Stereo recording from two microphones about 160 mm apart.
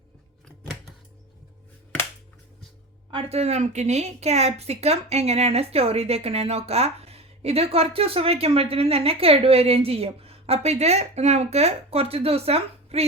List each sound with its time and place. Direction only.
3.1 s a woman's voice: 35° right (ahead or behind)